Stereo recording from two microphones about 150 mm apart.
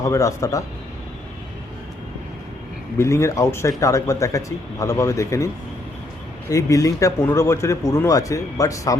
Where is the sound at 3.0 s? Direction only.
20° left (ahead or behind).